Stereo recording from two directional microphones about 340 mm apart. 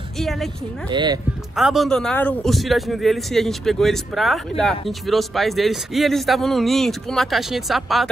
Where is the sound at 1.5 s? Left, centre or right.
Centre.